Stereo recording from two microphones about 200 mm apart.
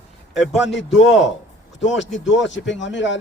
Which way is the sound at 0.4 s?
65° left (ahead or behind).